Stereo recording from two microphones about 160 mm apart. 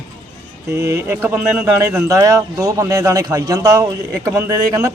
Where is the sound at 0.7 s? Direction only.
20° right (ahead or behind).